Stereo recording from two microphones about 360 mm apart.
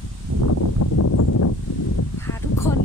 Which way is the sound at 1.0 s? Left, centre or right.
Left.